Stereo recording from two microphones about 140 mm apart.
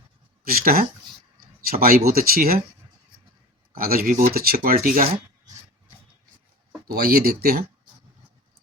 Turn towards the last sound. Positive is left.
turn(degrees=-90)